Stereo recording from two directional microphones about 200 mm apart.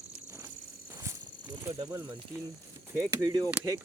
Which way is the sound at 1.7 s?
20° right (ahead or behind).